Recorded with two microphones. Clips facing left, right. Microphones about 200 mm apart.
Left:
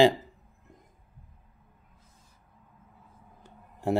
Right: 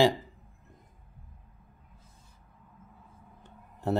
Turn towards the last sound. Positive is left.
turn(degrees=10)  # may be behind; listen again after turning